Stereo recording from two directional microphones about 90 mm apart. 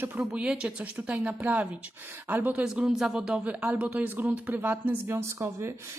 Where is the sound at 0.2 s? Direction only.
10° right (ahead or behind).